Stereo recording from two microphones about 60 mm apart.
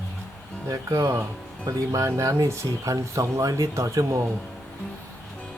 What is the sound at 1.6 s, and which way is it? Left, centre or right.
Speech, right.